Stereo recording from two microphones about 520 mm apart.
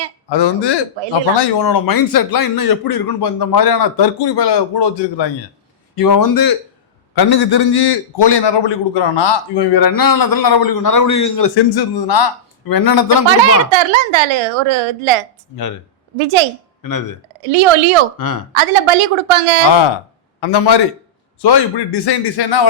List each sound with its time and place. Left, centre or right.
0.3 s a man's voice: left
6.0 s a man's voice: left
13.7 s speech: right
16.8 s speech: left
17.4 s a woman's voice: right
20.4 s a man's voice: left